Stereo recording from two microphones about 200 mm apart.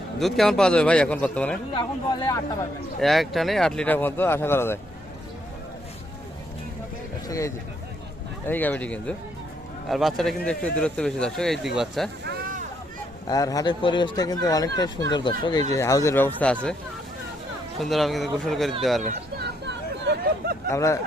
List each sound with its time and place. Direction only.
0.2 s speech: centre (ahead or behind)
1.7 s speech: 20° left (ahead or behind)
3.0 s speech: centre (ahead or behind)
7.3 s speech: 15° left (ahead or behind); by 12.1 s centre (ahead or behind)
13.2 s speech: 20° left (ahead or behind)
17.7 s speech: centre (ahead or behind)
19.4 s hubbub: 55° right (ahead or behind)
20.7 s speech: 15° left (ahead or behind)